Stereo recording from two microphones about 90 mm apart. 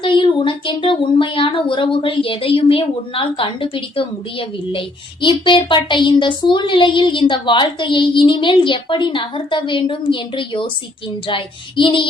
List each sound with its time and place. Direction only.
0.0 s speech: 70° left (ahead or behind)